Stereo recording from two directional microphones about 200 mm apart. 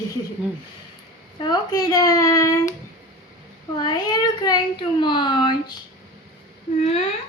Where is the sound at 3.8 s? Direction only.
20° left (ahead or behind).